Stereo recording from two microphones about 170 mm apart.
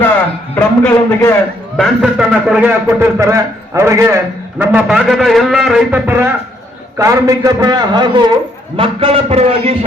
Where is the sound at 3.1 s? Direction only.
15° right (ahead or behind).